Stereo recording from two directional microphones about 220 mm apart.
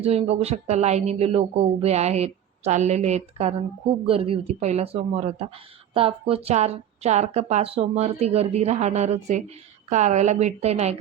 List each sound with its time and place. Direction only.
0.0 s a woman's voice: 25° right (ahead or behind)